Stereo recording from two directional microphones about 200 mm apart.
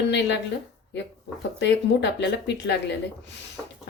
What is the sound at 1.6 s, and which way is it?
Speech, 60° left (ahead or behind).